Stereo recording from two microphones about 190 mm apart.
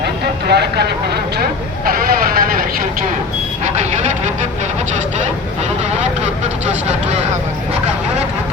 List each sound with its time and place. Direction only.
0.0 s speech: 60° right (ahead or behind)
3.6 s vehicle: 40° right (ahead or behind)
6.8 s speech: 35° right (ahead or behind)